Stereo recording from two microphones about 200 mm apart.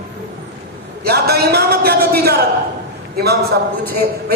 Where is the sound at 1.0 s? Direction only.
50° right (ahead or behind).